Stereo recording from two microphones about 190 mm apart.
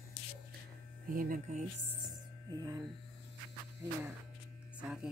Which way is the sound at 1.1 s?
45° right (ahead or behind).